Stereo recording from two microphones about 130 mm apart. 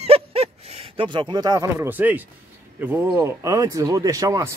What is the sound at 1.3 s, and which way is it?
Speech, 30° right (ahead or behind).